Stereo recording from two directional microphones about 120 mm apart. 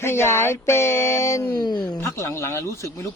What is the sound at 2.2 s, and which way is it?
Speech, 20° left (ahead or behind).